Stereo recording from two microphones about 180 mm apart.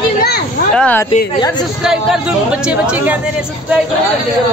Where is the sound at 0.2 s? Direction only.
60° left (ahead or behind).